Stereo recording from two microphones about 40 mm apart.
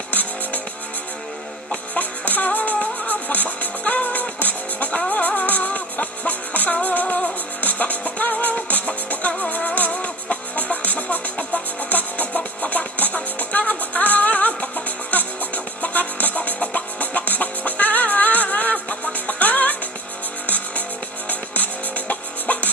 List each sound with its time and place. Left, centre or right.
0.1 s music: left
2.0 s music: left